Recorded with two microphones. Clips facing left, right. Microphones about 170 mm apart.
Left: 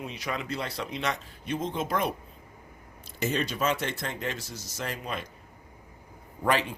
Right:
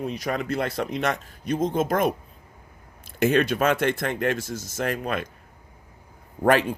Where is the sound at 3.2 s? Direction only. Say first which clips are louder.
Right 8 dB; 55° right (ahead or behind).